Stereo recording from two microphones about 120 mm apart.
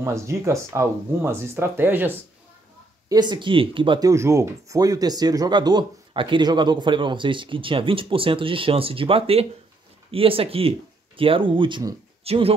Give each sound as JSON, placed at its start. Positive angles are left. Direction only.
{"t": 0.0, "sound": "speech", "side_deg": -25}
{"t": 3.1, "sound": "speech", "side_deg": -35}
{"t": 4.0, "sound": "speech", "side_deg": -25}
{"t": 12.3, "sound": "speech", "side_deg": -55}